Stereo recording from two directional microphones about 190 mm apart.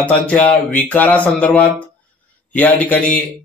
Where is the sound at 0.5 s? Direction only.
45° left (ahead or behind).